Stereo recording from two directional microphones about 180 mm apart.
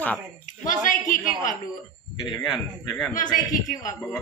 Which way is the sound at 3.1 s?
45° left (ahead or behind).